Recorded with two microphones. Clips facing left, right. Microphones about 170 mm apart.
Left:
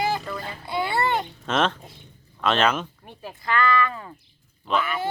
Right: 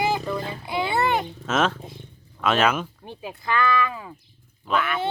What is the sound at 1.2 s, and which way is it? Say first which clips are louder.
Speech: right 1 dB; 5° right (ahead or behind).